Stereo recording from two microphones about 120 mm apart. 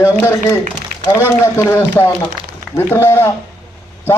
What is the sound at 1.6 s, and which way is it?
A man's voice, 20° left (ahead or behind).